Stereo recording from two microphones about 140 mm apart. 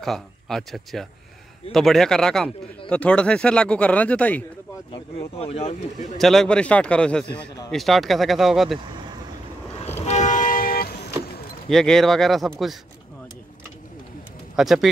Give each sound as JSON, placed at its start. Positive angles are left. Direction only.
{"t": 0.0, "sound": "speech", "side_deg": 0}
{"t": 5.4, "sound": "speech", "side_deg": 45}
{"t": 6.1, "sound": "speech", "side_deg": 0}
{"t": 10.0, "sound": "vehicle", "side_deg": 60}
{"t": 11.7, "sound": "speech", "side_deg": 5}
{"t": 14.5, "sound": "speech", "side_deg": 0}